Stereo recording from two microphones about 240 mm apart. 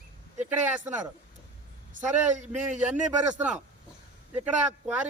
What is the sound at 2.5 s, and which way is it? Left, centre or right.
Speech, centre.